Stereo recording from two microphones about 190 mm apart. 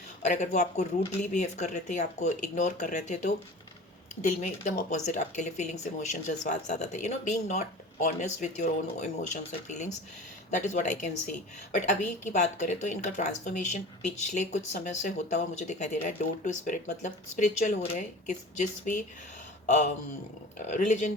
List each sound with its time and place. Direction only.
0.3 s a woman's voice: 40° left (ahead or behind)
20.6 s a woman's voice: 40° left (ahead or behind)